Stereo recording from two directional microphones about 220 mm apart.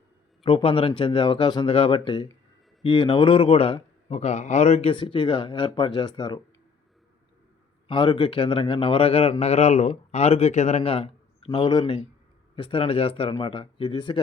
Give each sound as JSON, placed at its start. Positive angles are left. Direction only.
{"t": 0.4, "sound": "a man's voice", "side_deg": 25}
{"t": 7.9, "sound": "a man's voice", "side_deg": 20}